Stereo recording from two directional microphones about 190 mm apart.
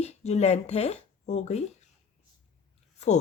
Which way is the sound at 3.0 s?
35° left (ahead or behind).